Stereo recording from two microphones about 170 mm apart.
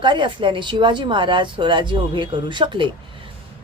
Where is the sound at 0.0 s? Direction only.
30° right (ahead or behind).